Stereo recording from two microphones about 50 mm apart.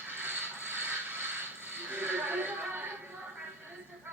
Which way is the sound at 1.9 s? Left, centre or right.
Right.